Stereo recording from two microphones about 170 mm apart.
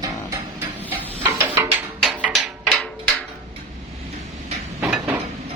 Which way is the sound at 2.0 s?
Centre (ahead or behind).